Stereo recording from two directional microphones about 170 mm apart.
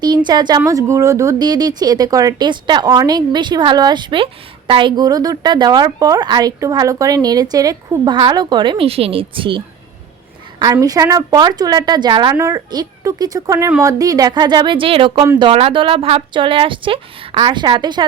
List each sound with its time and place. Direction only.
0.0 s speech: 25° right (ahead or behind)